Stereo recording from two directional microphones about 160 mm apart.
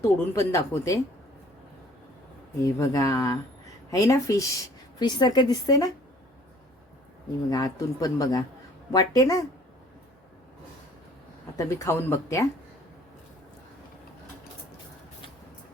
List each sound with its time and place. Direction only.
0.0 s speech: 15° left (ahead or behind)
2.6 s speech: 15° left (ahead or behind)
7.5 s speech: 25° left (ahead or behind)
11.5 s speech: 15° left (ahead or behind)